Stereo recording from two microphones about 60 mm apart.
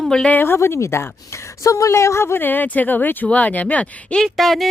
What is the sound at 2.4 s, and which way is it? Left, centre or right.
A woman's voice, left.